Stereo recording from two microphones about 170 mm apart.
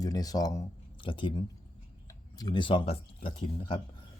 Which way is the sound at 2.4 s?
25° left (ahead or behind).